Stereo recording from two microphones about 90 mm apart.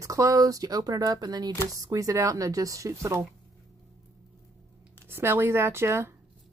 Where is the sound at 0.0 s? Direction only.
40° right (ahead or behind).